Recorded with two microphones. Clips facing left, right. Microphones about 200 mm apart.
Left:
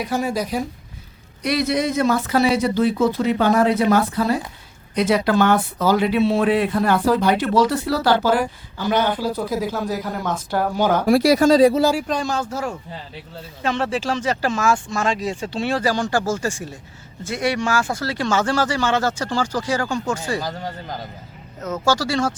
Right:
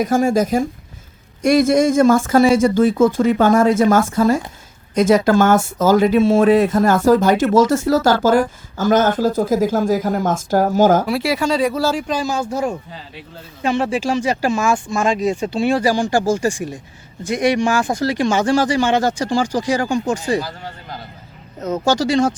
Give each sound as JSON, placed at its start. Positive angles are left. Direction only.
{"t": 0.0, "sound": "speech", "side_deg": -45}
{"t": 11.0, "sound": "speech", "side_deg": 45}
{"t": 11.7, "sound": "speech", "side_deg": 20}
{"t": 11.9, "sound": "speech", "side_deg": 0}
{"t": 21.6, "sound": "speech", "side_deg": -20}